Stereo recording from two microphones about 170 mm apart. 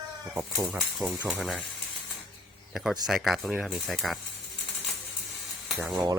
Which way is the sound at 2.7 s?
Centre (ahead or behind).